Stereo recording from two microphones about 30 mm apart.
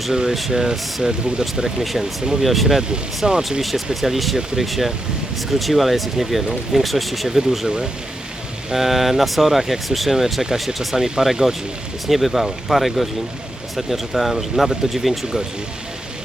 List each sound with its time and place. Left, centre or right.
0.1 s speech: centre
1.0 s speech: centre
1.8 s speech: centre
3.2 s speech: right
4.0 s speech: centre
8.7 s speech: centre
10.4 s speech: right; by 15.3 s centre